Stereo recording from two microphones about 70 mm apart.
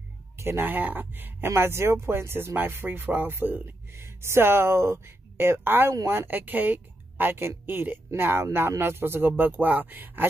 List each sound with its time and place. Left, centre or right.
0.4 s speech: right